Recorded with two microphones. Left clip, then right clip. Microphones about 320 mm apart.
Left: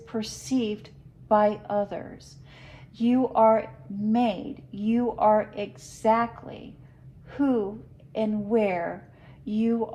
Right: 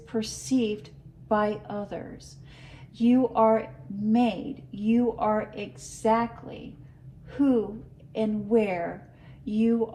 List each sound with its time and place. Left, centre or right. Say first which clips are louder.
0.0 s a woman's voice: right 2 dB; left